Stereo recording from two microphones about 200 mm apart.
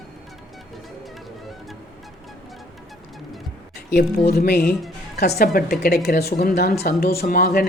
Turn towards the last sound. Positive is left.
turn(degrees=45)  # may be behind; listen again after turning